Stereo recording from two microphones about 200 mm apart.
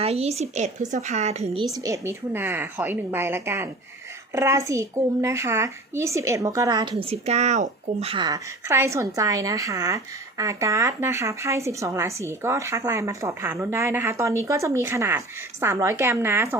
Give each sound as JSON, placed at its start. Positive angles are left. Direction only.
{"t": 0.0, "sound": "speech", "side_deg": -30}
{"t": 1.7, "sound": "a woman's voice", "side_deg": -15}
{"t": 6.9, "sound": "a woman's voice", "side_deg": -30}